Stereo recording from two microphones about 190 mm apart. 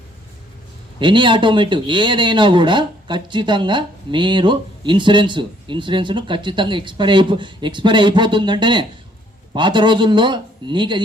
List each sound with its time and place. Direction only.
0.9 s speech: 25° right (ahead or behind)